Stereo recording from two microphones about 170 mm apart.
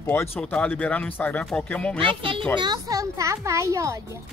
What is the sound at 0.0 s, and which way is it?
Speech, 15° left (ahead or behind).